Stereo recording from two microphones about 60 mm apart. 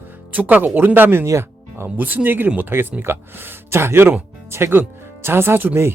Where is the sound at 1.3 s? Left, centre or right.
Right.